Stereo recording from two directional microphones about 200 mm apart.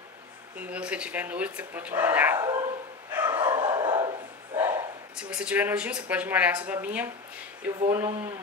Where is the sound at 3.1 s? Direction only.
10° right (ahead or behind).